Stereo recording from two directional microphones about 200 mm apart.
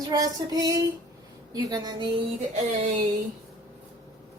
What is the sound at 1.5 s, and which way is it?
Speech, 20° right (ahead or behind).